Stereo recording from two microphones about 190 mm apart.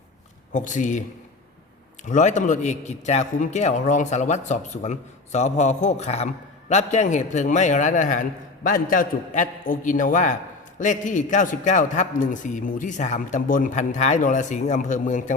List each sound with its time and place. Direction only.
0.5 s a man's voice: 40° left (ahead or behind)
2.0 s a man's voice: 40° left (ahead or behind)